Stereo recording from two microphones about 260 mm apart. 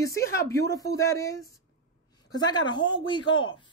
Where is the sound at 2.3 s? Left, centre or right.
Centre.